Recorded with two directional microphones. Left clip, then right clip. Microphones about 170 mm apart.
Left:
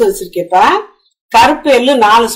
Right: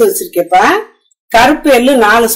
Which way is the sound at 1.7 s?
45° right (ahead or behind).